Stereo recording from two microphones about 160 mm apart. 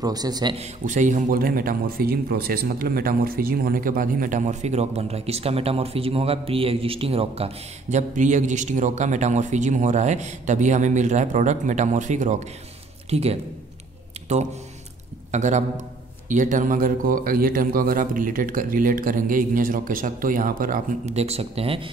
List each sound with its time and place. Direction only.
0.0 s a man's voice: 25° right (ahead or behind)
0.6 s speech: 50° right (ahead or behind)
8.1 s speech: 50° right (ahead or behind)
15.3 s a man's voice: 50° right (ahead or behind)
21.1 s speech: 40° right (ahead or behind)